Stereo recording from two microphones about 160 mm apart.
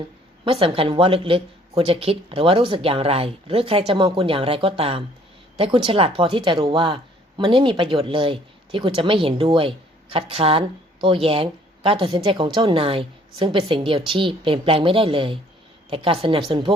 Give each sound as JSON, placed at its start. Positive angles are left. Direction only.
{"t": 0.4, "sound": "speech", "side_deg": -35}